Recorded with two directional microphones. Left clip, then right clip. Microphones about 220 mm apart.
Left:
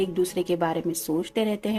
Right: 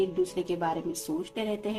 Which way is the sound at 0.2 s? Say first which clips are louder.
Left 5 dB; 40° left (ahead or behind).